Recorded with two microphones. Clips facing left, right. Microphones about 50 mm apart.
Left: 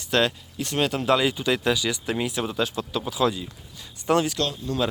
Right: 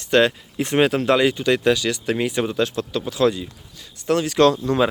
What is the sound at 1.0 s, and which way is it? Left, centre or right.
Speech, centre.